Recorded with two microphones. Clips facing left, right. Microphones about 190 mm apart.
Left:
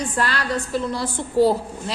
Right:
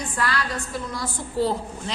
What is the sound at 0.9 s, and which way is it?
Speech, 35° left (ahead or behind).